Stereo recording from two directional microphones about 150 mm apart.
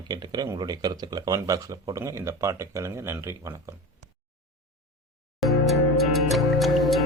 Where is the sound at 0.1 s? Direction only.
25° right (ahead or behind).